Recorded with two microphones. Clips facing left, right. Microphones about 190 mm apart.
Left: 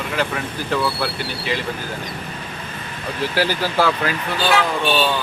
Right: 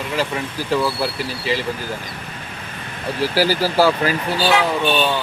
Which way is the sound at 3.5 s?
35° right (ahead or behind).